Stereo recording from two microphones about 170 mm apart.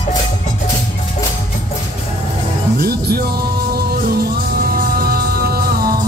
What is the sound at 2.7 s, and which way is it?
Music, 65° right (ahead or behind).